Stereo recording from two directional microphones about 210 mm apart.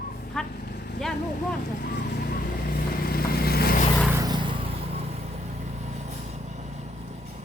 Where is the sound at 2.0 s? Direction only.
45° left (ahead or behind).